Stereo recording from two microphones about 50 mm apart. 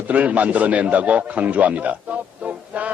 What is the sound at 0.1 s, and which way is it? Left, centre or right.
A man's voice, right.